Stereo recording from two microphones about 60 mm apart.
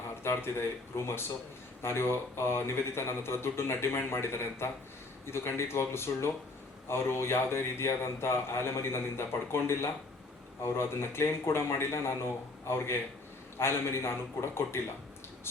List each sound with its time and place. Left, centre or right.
0.2 s a man's voice: left